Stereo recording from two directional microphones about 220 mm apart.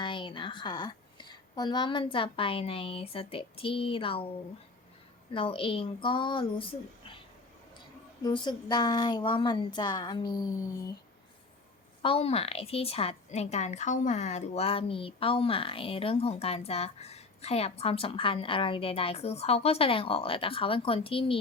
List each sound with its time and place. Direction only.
0.0 s a woman's voice: 20° left (ahead or behind)
5.3 s a woman's voice: 25° left (ahead or behind)
8.2 s a woman's voice: 20° left (ahead or behind)
12.0 s a woman's voice: 25° left (ahead or behind)